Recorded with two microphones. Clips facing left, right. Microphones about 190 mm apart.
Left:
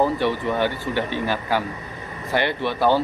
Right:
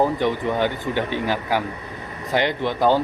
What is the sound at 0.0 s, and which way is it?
Speech, 15° right (ahead or behind).